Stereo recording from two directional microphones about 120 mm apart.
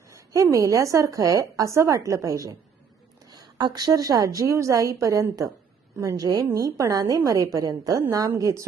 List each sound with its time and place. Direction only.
0.5 s a woman's voice: 25° right (ahead or behind)